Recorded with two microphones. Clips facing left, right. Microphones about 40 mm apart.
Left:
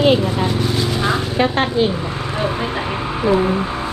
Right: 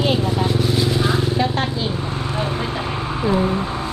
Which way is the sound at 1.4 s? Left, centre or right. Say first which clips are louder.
Left 5 dB; left.